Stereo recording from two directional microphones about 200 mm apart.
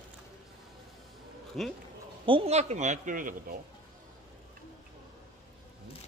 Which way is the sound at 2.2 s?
30° right (ahead or behind).